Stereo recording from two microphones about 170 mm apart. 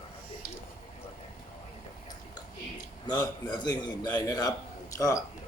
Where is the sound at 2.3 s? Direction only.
25° left (ahead or behind).